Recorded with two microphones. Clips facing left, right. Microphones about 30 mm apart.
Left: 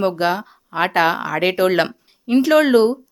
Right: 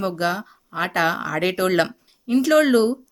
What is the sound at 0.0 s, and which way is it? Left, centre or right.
Speech, left.